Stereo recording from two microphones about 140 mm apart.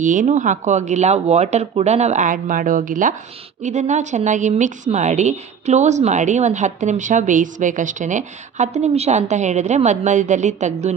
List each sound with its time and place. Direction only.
0.0 s a woman's voice: 65° right (ahead or behind)
3.6 s a woman's voice: 55° right (ahead or behind)